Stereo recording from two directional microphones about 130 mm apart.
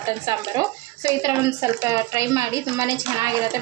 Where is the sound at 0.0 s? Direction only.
25° right (ahead or behind).